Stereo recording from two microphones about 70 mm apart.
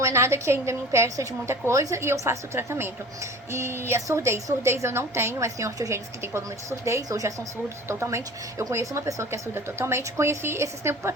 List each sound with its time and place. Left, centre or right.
0.0 s a woman's voice: right
1.5 s a woman's voice: right
7.9 s a woman's voice: right